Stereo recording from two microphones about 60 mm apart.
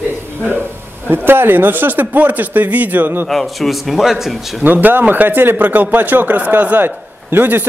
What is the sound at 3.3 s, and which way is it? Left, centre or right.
A man's voice, centre.